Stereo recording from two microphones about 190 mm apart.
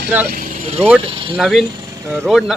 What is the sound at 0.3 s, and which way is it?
Speech, 45° right (ahead or behind).